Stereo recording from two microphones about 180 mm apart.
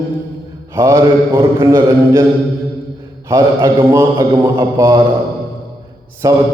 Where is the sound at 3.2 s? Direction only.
15° right (ahead or behind).